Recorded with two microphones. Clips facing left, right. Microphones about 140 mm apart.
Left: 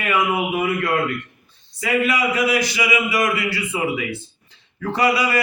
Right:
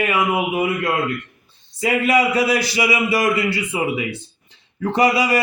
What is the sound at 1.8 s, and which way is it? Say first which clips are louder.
A man's voice: right 3 dB; 35° right (ahead or behind).